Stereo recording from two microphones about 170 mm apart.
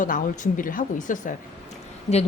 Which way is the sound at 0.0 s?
50° left (ahead or behind).